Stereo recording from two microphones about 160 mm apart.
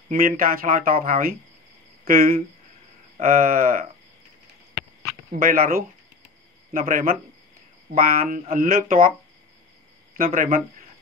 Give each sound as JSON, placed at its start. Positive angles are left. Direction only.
{"t": 0.1, "sound": "speech", "side_deg": -60}
{"t": 5.3, "sound": "speech", "side_deg": -60}
{"t": 10.1, "sound": "speech", "side_deg": -60}